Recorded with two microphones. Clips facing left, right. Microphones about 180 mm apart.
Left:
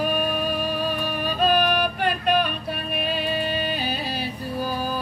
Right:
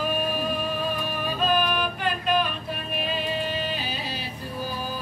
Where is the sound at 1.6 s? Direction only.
65° left (ahead or behind).